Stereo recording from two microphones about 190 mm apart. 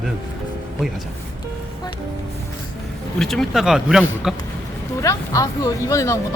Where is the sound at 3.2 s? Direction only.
Centre (ahead or behind).